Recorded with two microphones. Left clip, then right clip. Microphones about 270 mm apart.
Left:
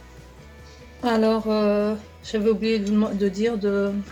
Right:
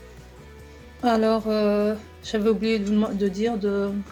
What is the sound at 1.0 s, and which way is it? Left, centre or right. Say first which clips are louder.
A woman's voice: even; centre.